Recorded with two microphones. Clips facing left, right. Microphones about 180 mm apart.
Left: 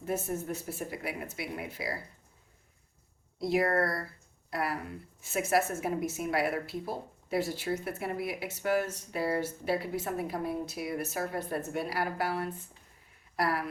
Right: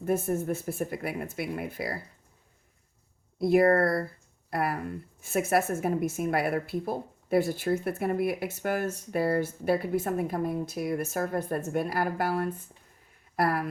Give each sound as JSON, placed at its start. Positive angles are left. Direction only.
{"t": 0.0, "sound": "a woman's voice", "side_deg": -50}
{"t": 3.3, "sound": "a woman's voice", "side_deg": -55}